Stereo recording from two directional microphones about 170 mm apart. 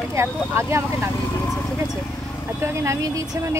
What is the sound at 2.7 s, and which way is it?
Speech, 15° right (ahead or behind).